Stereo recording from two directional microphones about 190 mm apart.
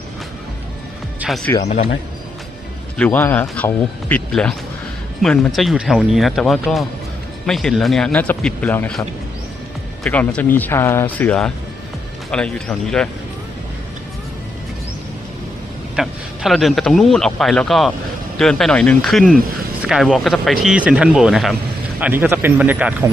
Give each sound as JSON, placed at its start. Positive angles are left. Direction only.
{"t": 1.2, "sound": "music", "side_deg": -5}
{"t": 1.6, "sound": "speech", "side_deg": 35}
{"t": 3.0, "sound": "speech", "side_deg": 10}
{"t": 16.0, "sound": "speech", "side_deg": 0}